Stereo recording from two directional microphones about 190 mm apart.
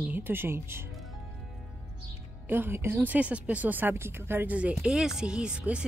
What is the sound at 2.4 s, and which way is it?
Speech, 10° right (ahead or behind).